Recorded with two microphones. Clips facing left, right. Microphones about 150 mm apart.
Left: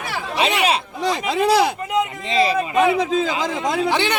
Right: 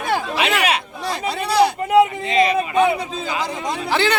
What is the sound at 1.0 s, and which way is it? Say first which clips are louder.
Speech: left 4 dB; 90° left.